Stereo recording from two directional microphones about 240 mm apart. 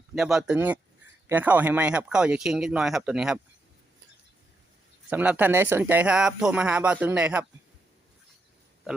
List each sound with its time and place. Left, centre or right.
0.1 s speech: centre
5.0 s speech: centre